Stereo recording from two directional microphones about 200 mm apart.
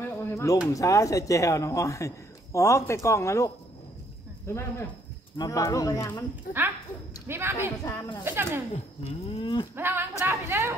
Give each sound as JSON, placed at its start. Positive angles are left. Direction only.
{"t": 0.0, "sound": "a sound", "side_deg": 10}
{"t": 0.7, "sound": "a man's voice", "side_deg": 15}
{"t": 7.2, "sound": "a woman's voice", "side_deg": -10}
{"t": 7.8, "sound": "a man's voice", "side_deg": 15}
{"t": 8.2, "sound": "a woman's voice", "side_deg": -10}
{"t": 8.7, "sound": "livestock", "side_deg": 30}
{"t": 9.8, "sound": "a woman's voice", "side_deg": -10}